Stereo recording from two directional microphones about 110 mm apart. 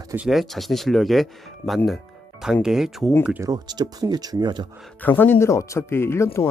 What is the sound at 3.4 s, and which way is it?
Speech, 40° right (ahead or behind).